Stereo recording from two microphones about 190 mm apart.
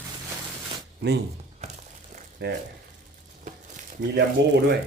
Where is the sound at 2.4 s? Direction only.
65° right (ahead or behind).